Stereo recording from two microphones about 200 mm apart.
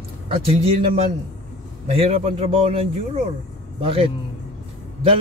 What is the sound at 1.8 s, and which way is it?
A man's voice, 30° right (ahead or behind).